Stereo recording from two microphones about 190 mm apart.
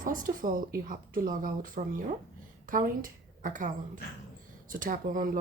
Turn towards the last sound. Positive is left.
turn(degrees=-45)  # may be behind; listen again after turning